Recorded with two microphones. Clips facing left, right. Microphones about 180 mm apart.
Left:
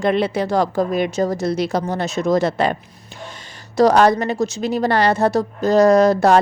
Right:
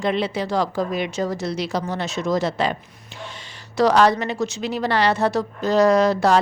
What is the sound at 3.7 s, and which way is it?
A woman's voice, 45° left (ahead or behind).